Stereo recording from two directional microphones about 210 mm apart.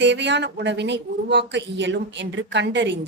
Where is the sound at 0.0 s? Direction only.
55° right (ahead or behind).